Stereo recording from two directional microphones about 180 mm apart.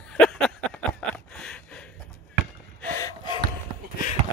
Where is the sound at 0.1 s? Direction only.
5° left (ahead or behind).